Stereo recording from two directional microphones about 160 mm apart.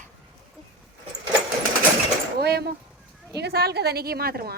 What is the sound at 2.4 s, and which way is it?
A woman's voice, 90° right.